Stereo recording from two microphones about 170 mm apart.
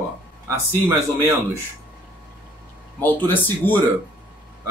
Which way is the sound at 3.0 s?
10° left (ahead or behind).